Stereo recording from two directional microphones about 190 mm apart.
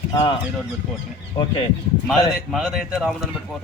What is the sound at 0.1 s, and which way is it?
Speech, 20° left (ahead or behind).